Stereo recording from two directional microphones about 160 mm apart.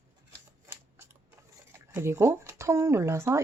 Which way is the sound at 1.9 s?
15° right (ahead or behind).